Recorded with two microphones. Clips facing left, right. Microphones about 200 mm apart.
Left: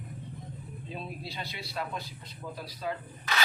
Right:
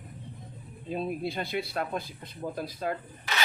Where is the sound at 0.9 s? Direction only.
50° right (ahead or behind).